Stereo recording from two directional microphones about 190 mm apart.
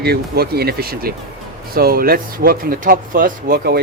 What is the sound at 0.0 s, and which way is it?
Speech, 55° right (ahead or behind).